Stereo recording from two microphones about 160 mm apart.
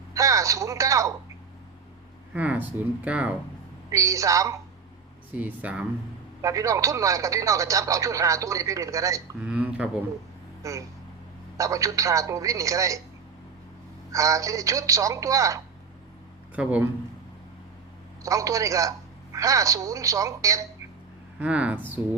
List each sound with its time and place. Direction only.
0.1 s speech: 20° right (ahead or behind)
2.3 s speech: 10° right (ahead or behind)
3.9 s speech: 20° right (ahead or behind)
6.4 s speech: 20° right (ahead or behind)
9.4 s speech: 5° right (ahead or behind)
10.6 s speech: 20° right (ahead or behind)
14.1 s speech: 20° right (ahead or behind)
16.6 s speech: 10° right (ahead or behind)
18.2 s a woman's voice: 20° right (ahead or behind)
21.3 s speech: 10° right (ahead or behind)